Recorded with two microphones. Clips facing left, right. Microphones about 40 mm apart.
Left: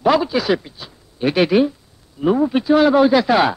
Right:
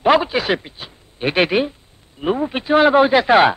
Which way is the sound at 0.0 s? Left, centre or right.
Right.